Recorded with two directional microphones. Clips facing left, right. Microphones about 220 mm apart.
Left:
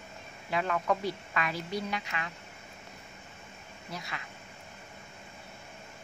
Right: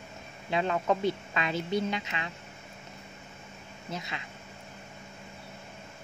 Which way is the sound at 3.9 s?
20° right (ahead or behind).